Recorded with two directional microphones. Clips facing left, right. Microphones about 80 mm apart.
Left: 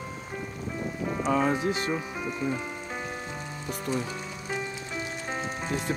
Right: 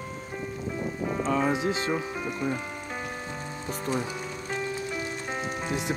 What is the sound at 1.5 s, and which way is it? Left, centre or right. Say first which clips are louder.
Speech: even; right.